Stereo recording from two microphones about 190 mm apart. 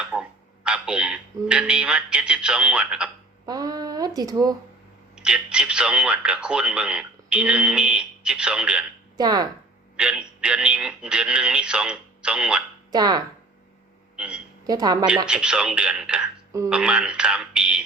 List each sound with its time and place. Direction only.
0.0 s speech: 5° right (ahead or behind)
3.4 s speech: 20° right (ahead or behind)
5.1 s speech: 5° right (ahead or behind)
9.1 s speech: 20° right (ahead or behind)
10.0 s speech: 5° right (ahead or behind)
12.9 s speech: 20° right (ahead or behind)
14.2 s a woman's voice: 5° right (ahead or behind)
14.7 s speech: 20° right (ahead or behind)
15.3 s speech: 5° right (ahead or behind)